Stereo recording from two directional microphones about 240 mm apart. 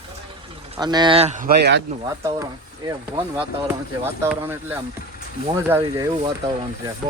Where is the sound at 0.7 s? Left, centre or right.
Centre; by 1.8 s right.